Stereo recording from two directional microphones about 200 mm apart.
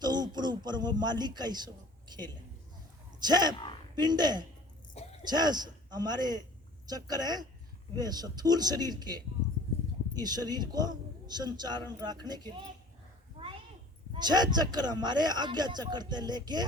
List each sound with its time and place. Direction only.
0.0 s speech: 20° right (ahead or behind)
5.0 s a sound: 30° left (ahead or behind)
5.3 s speech: 20° right (ahead or behind)
14.1 s speech: 20° right (ahead or behind)